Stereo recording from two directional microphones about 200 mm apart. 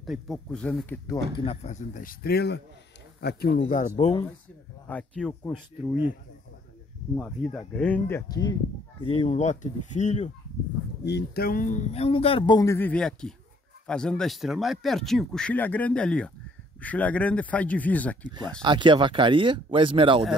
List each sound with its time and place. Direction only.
0.0 s speech: centre (ahead or behind)
1.4 s speech: 30° left (ahead or behind)
4.8 s speech: 5° left (ahead or behind)
7.2 s speech: 5° left (ahead or behind); by 10.3 s 35° left (ahead or behind)
11.1 s a man's voice: 55° left (ahead or behind); by 18.3 s 5° left (ahead or behind)
18.6 s speech: 25° right (ahead or behind)